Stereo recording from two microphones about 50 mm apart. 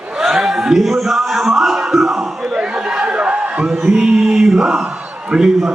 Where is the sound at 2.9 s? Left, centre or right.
Centre.